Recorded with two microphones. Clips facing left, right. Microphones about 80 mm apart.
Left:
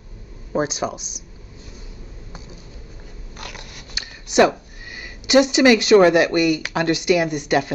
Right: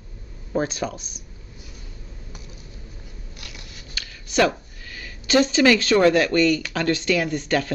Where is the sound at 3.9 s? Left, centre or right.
Centre.